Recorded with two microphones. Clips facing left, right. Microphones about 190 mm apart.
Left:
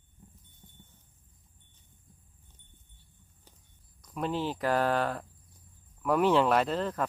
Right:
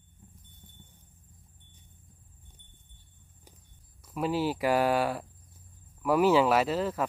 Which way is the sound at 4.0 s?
5° right (ahead or behind).